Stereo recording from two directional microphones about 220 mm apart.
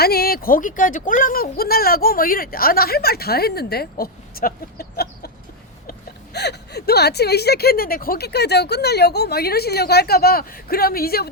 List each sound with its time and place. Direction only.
0.0 s speech: 45° left (ahead or behind)